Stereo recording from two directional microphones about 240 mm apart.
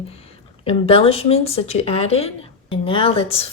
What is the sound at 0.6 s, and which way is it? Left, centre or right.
Speech, left.